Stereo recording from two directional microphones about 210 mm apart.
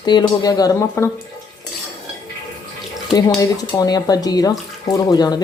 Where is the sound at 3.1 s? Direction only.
20° left (ahead or behind).